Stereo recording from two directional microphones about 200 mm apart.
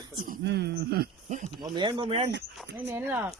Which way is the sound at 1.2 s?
35° right (ahead or behind).